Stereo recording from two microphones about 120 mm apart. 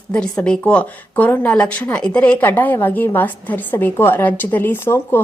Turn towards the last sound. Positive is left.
turn(degrees=20)  # may be behind; listen again after turning